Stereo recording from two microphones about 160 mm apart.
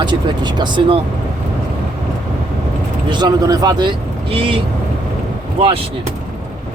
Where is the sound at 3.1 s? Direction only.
30° right (ahead or behind).